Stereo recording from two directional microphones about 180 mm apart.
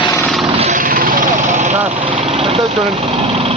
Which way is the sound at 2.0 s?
30° right (ahead or behind).